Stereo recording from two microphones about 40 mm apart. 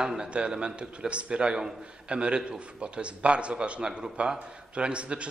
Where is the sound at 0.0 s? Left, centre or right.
Right.